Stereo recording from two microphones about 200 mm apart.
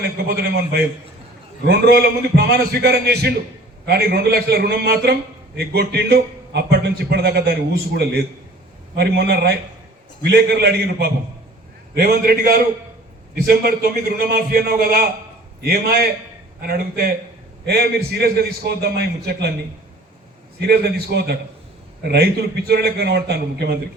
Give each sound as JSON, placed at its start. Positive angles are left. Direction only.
{"t": 0.0, "sound": "a man's voice", "side_deg": -50}
{"t": 2.3, "sound": "a man's voice", "side_deg": -55}
{"t": 20.6, "sound": "a man's voice", "side_deg": -55}